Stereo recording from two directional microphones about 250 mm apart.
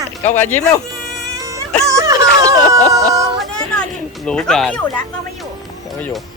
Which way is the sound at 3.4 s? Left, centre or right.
Centre.